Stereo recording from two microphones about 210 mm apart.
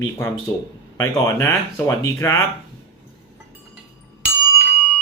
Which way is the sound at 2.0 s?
15° left (ahead or behind).